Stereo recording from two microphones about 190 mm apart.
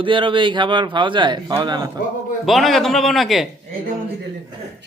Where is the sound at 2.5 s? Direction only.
Centre (ahead or behind).